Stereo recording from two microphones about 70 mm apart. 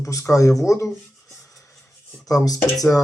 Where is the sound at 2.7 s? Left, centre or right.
Left.